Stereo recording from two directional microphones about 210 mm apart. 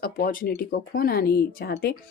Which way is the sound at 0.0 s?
40° left (ahead or behind).